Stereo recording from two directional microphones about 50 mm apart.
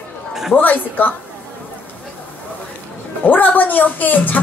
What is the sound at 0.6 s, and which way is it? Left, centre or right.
Speech, left.